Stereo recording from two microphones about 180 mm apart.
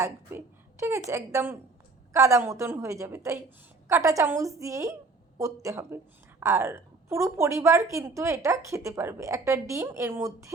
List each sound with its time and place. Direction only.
0.0 s a woman's voice: 15° right (ahead or behind)